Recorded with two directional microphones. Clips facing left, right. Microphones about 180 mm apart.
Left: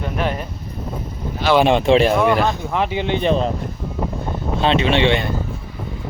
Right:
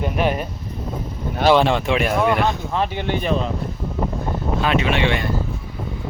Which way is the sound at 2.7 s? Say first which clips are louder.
Left 2 dB; 15° left (ahead or behind).